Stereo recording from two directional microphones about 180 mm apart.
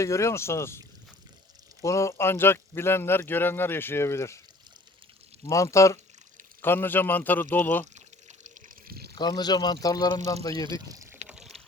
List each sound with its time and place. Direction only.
0.0 s a man's voice: 15° left (ahead or behind)
1.8 s a man's voice: 15° left (ahead or behind)
5.5 s a man's voice: 15° left (ahead or behind)
7.9 s pour: 40° right (ahead or behind)
8.9 s a sound: 60° right (ahead or behind)
9.1 s speech: 25° left (ahead or behind)
10.7 s speech: 20° right (ahead or behind)
11.3 s water: centre (ahead or behind)